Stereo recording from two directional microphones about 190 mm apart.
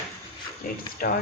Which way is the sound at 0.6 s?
45° left (ahead or behind).